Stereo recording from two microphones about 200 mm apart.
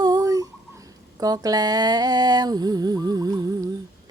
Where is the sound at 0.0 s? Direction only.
15° right (ahead or behind).